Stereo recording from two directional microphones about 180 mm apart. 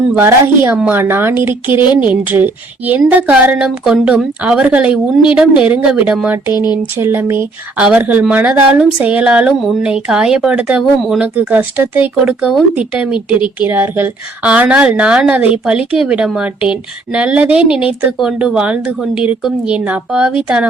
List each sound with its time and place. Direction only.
0.2 s speech: 10° right (ahead or behind)
1.8 s speech: 25° left (ahead or behind)
2.0 s speech: 10° right (ahead or behind)
6.5 s speech: 25° left (ahead or behind)
6.9 s speech: 10° right (ahead or behind)